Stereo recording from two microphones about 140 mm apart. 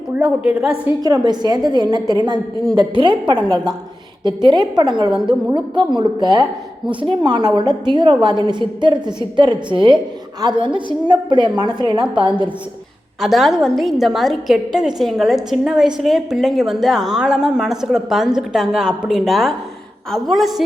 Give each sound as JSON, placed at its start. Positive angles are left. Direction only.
{"t": 0.4, "sound": "a woman's voice", "side_deg": -10}
{"t": 1.0, "sound": "a woman's voice", "side_deg": -30}
{"t": 13.1, "sound": "a woman's voice", "side_deg": 0}